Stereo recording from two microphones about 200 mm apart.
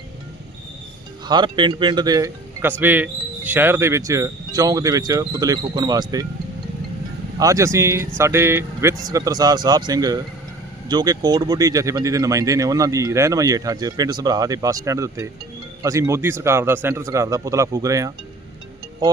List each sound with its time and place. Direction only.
1.3 s speech: 25° right (ahead or behind)
7.3 s speech: 15° right (ahead or behind)